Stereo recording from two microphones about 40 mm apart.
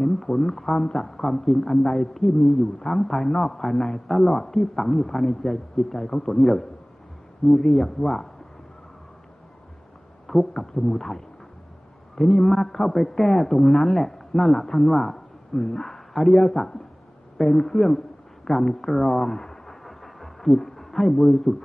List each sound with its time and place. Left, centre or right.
0.0 s a man's voice: centre
10.2 s a man's voice: centre